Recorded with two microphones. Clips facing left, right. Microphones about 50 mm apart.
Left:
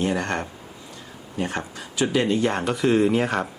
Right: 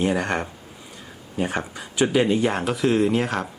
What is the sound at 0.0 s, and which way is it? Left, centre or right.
Speech, centre.